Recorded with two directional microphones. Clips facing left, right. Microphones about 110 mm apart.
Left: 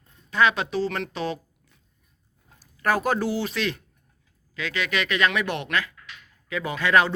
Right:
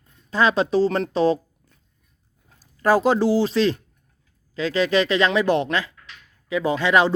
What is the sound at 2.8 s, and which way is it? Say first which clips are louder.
Speech: right 6 dB; 25° right (ahead or behind).